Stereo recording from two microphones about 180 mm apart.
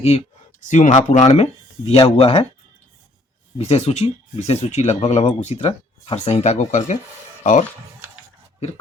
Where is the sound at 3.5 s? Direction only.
35° left (ahead or behind).